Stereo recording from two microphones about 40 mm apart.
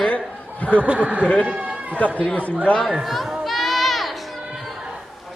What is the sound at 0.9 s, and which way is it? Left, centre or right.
Speech, right.